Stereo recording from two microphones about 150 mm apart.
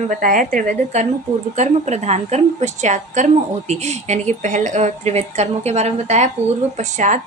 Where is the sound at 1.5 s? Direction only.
50° right (ahead or behind).